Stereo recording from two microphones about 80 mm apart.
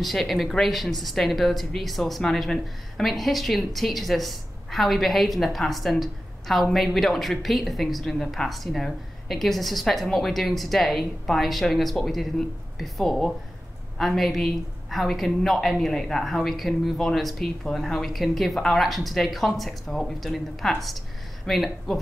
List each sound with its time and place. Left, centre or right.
0.0 s speech: centre